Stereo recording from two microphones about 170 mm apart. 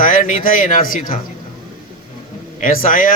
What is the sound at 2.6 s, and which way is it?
Speech, 55° left (ahead or behind).